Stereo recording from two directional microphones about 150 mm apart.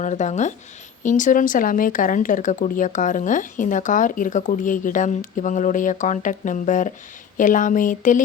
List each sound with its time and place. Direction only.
0.0 s speech: 55° left (ahead or behind)